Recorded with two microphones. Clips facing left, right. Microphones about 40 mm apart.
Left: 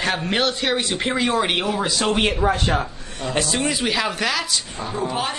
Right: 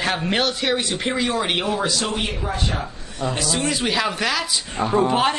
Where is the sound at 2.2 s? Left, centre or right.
Left.